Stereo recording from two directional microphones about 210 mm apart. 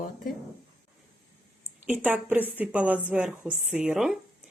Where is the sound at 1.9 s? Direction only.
5° right (ahead or behind).